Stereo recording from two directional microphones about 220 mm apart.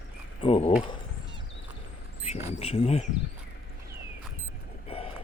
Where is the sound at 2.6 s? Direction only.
30° left (ahead or behind).